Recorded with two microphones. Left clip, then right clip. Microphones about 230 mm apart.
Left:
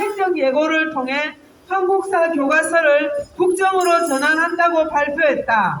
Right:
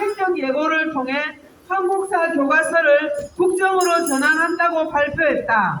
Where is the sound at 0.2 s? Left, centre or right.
Left.